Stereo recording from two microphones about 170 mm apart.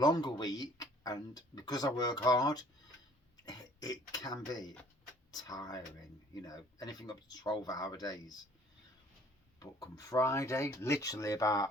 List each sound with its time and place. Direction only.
0.0 s speech: 25° left (ahead or behind)
9.6 s speech: 20° left (ahead or behind)